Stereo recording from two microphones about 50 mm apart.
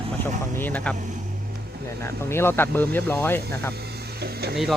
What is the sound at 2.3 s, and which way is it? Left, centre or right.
Speech, left.